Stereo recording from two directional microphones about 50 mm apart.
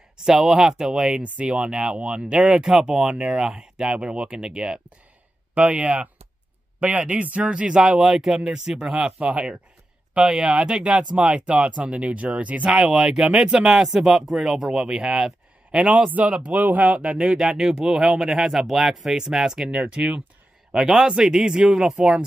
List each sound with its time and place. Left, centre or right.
0.2 s speech: centre
1.1 s speech: right
2.6 s speech: centre
8.0 s speech: centre
10.1 s speech: centre
12.7 s speech: centre
15.7 s speech: right; by 22.2 s centre